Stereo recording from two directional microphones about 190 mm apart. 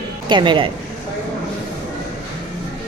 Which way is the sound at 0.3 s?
25° right (ahead or behind).